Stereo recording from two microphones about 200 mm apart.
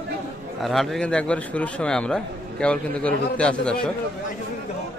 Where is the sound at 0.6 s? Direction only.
Centre (ahead or behind).